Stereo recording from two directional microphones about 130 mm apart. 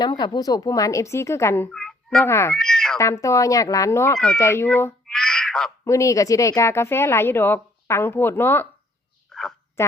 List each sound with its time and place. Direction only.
0.0 s speech: 35° left (ahead or behind)
1.7 s a sound: 5° left (ahead or behind)
2.2 s speech: 20° left (ahead or behind)
2.5 s meow: 5° left (ahead or behind)
3.0 s speech: 25° left (ahead or behind)
5.0 s a sound: 5° left (ahead or behind)
5.8 s speech: 25° left (ahead or behind)
9.3 s a sound: 5° left (ahead or behind)
9.8 s speech: 20° left (ahead or behind)